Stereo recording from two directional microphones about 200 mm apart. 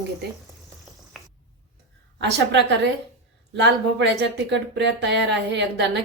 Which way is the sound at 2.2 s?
60° right (ahead or behind).